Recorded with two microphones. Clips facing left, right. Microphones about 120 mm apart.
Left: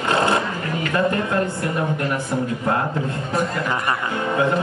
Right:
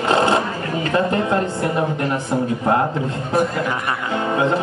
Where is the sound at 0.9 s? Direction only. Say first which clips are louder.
Right 2 dB; 25° right (ahead or behind).